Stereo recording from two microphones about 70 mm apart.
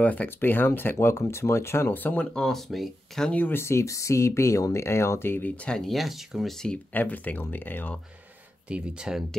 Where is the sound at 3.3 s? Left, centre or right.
Left.